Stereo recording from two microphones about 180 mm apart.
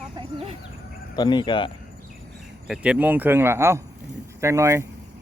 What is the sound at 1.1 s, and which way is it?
Speech, 25° left (ahead or behind).